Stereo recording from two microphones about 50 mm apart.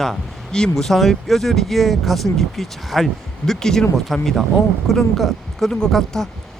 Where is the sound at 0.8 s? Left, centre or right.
Centre.